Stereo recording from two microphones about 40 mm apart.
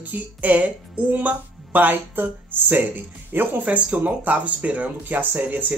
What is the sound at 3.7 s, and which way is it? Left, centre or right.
Speech, right.